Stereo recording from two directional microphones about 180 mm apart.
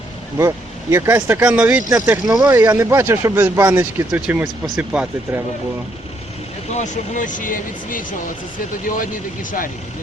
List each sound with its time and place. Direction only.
0.3 s speech: 15° right (ahead or behind)
1.9 s speech: 20° right (ahead or behind)
6.7 s speech: 40° left (ahead or behind)